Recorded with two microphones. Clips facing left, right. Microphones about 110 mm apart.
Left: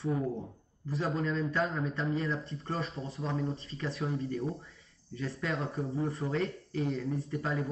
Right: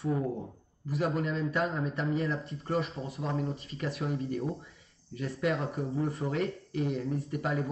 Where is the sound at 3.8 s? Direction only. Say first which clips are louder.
Right 1 dB; 30° left (ahead or behind).